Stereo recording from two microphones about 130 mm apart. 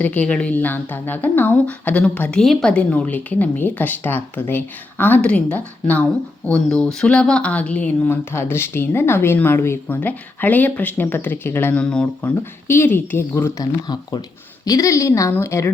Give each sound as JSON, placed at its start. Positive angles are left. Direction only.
{"t": 0.0, "sound": "a woman's voice", "side_deg": 10}
{"t": 12.6, "sound": "a woman's voice", "side_deg": 20}
{"t": 13.8, "sound": "a woman's voice", "side_deg": 30}